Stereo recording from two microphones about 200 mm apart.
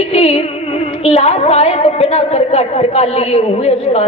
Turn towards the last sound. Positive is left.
turn(degrees=30)  # may be behind; listen again after turning